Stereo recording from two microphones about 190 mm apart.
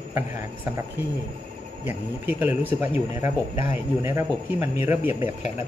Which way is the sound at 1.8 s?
10° right (ahead or behind).